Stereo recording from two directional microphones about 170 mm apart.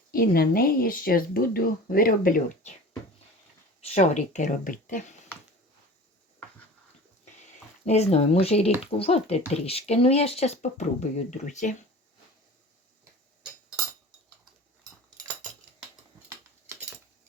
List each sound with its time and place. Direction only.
0.1 s speech: 60° left (ahead or behind)
3.8 s speech: 40° left (ahead or behind)
7.9 s speech: 40° left (ahead or behind)